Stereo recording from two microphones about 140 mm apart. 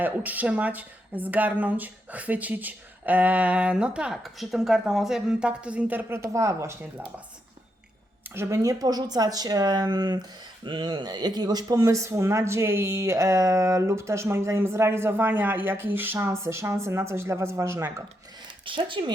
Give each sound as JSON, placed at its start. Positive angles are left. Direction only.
{"t": 0.0, "sound": "speech", "side_deg": -10}
{"t": 8.3, "sound": "speech", "side_deg": -20}
{"t": 18.6, "sound": "speech", "side_deg": -35}